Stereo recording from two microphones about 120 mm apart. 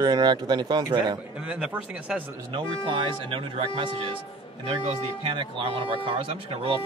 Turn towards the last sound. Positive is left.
turn(degrees=-50)  # may be behind; listen again after turning